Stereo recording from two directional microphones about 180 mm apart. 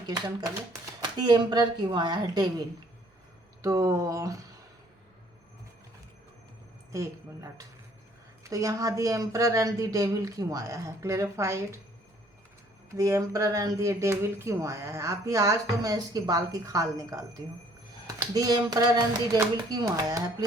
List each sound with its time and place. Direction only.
1.2 s speech: 25° right (ahead or behind)
6.9 s speech: 15° right (ahead or behind)
13.0 s speech: 20° right (ahead or behind)